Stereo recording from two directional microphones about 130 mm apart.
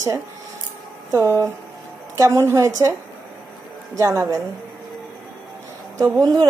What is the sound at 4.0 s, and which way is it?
Speech, 20° right (ahead or behind).